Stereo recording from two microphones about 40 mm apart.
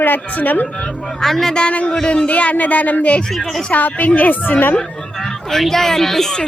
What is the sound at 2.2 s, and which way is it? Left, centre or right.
A woman's voice, left.